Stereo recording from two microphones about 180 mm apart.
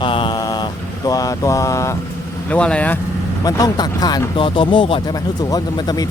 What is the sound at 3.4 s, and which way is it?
Speech, 20° left (ahead or behind).